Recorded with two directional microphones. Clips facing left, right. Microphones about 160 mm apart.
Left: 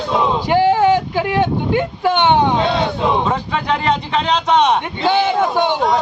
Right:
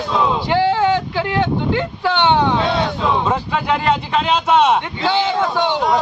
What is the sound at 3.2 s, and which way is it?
Speech, 10° right (ahead or behind).